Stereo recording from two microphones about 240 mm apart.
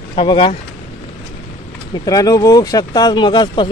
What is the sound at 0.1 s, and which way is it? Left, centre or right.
Speech, left.